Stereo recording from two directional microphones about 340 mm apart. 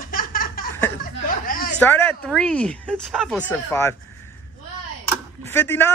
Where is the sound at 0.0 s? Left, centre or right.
Left.